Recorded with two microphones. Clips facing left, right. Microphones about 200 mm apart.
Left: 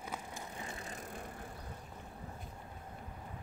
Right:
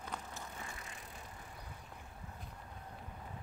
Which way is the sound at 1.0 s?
55° left (ahead or behind).